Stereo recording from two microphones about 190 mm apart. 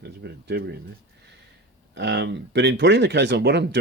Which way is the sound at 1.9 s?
65° right (ahead or behind).